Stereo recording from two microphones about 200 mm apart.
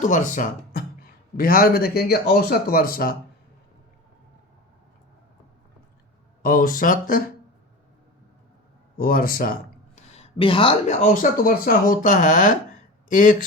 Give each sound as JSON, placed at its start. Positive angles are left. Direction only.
{"t": 0.0, "sound": "speech", "side_deg": 40}
{"t": 6.4, "sound": "speech", "side_deg": 45}
{"t": 9.0, "sound": "speech", "side_deg": 45}
{"t": 10.2, "sound": "a woman's voice", "side_deg": 25}
{"t": 11.0, "sound": "speech", "side_deg": 40}